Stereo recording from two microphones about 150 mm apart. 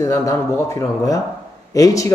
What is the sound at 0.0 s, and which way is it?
A man's voice, 20° left (ahead or behind).